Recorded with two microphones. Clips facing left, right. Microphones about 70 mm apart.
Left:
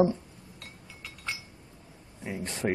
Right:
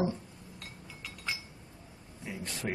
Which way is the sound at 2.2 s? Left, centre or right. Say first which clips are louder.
Left 6 dB; left.